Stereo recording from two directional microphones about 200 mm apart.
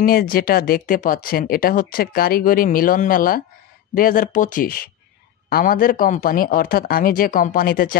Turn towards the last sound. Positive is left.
turn(degrees=45)  # may be behind; listen again after turning